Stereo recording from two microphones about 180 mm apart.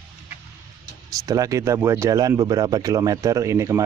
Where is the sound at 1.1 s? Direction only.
20° right (ahead or behind).